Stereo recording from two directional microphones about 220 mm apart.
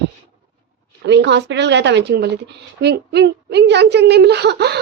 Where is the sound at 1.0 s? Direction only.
50° right (ahead or behind).